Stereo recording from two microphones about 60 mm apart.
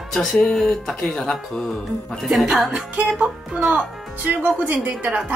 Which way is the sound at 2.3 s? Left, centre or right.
Centre.